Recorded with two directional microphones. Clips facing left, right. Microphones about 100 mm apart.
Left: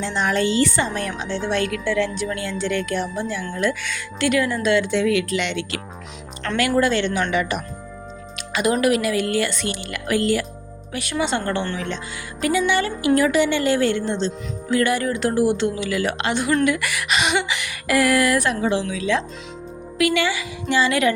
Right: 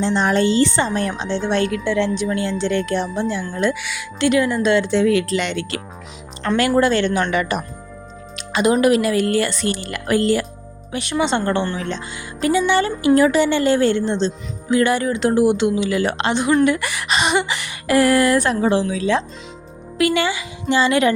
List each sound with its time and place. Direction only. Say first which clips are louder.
0.0 s a woman's voice: right 4 dB; 30° right (ahead or behind)
7.0 s speech: right 2 dB; 45° right (ahead or behind)
8.4 s a woman's voice: right 4 dB; 25° right (ahead or behind)
15.9 s a woman's voice: right 3 dB; 30° right (ahead or behind)